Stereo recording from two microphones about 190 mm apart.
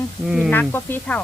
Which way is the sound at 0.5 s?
10° left (ahead or behind).